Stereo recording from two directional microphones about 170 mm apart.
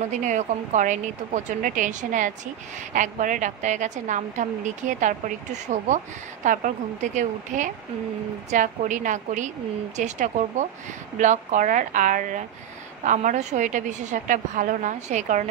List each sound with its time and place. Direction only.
0.2 s a woman's voice: 45° right (ahead or behind)